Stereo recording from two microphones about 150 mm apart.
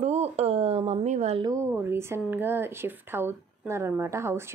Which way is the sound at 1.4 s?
20° right (ahead or behind).